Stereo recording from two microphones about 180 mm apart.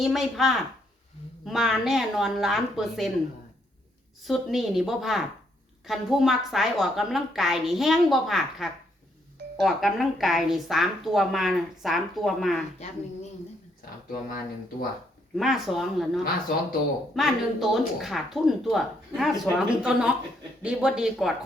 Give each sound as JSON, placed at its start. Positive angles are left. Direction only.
{"t": 0.0, "sound": "speech", "side_deg": 0}
{"t": 4.2, "sound": "speech", "side_deg": 0}
{"t": 14.1, "sound": "speech", "side_deg": 50}
{"t": 15.4, "sound": "speech", "side_deg": 0}